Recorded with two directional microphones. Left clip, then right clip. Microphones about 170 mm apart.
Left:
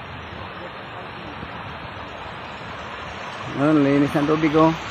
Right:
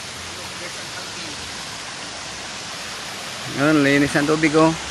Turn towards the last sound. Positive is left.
turn(degrees=-15)  # may be behind; listen again after turning